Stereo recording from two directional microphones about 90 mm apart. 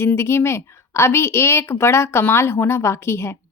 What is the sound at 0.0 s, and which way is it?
A woman's voice, 30° left (ahead or behind).